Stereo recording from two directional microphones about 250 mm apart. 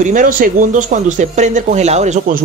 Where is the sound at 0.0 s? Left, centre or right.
Right.